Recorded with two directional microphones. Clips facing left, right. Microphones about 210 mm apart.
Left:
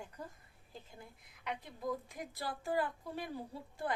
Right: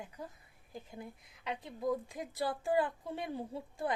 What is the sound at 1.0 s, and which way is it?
A woman's voice, 25° right (ahead or behind).